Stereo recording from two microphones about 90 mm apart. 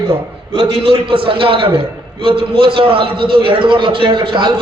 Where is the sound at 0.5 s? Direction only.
70° right (ahead or behind).